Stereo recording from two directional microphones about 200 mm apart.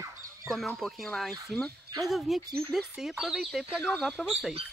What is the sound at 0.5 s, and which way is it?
Speech, centre (ahead or behind).